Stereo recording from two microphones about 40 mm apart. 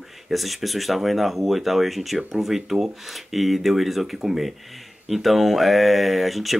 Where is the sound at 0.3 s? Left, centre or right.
Centre.